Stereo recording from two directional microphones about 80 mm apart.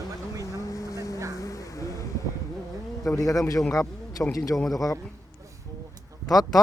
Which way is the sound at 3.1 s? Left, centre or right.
Left.